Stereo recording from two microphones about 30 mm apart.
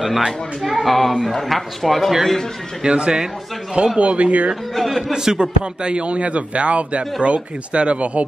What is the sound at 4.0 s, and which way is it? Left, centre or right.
Speech, right.